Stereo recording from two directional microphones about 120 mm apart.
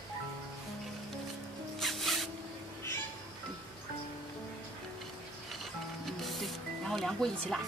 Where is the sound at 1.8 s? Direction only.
Centre (ahead or behind).